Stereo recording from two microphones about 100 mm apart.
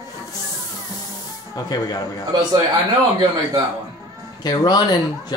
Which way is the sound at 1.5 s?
40° left (ahead or behind).